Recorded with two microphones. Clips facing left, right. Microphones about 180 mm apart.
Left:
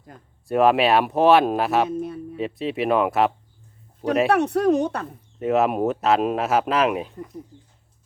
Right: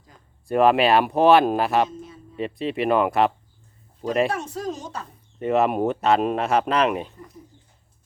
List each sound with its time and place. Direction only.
0.1 s speech: 55° left (ahead or behind)
0.4 s speech: centre (ahead or behind)
1.9 s a sound: 65° left (ahead or behind)
2.4 s speech: centre (ahead or behind)
4.3 s speech: 65° left (ahead or behind)
5.4 s speech: centre (ahead or behind)